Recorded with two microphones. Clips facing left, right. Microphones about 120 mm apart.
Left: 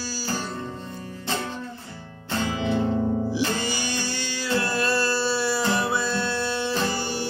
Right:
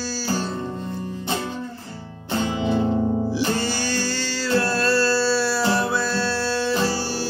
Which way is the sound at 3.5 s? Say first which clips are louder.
Right 4 dB; 15° left (ahead or behind).